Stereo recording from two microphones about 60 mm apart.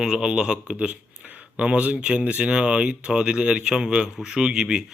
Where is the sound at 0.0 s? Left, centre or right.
Centre.